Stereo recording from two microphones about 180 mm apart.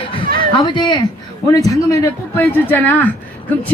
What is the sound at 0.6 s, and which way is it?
A woman's voice, 25° left (ahead or behind).